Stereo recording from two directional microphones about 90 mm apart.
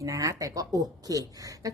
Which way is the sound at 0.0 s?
35° right (ahead or behind).